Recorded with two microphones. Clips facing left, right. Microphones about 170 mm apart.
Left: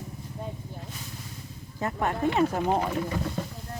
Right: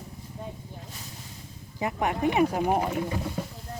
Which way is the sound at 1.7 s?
15° right (ahead or behind).